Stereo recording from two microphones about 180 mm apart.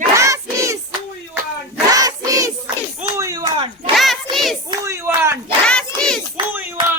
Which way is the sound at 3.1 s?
15° right (ahead or behind).